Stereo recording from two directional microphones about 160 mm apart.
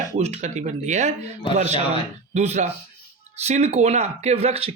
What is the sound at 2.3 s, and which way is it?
Speech, 45° right (ahead or behind).